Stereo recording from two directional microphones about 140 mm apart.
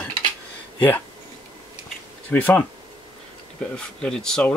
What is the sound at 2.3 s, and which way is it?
Speech, 10° left (ahead or behind).